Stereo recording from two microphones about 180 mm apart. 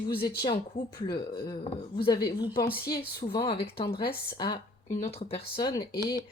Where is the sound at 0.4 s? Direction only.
25° left (ahead or behind).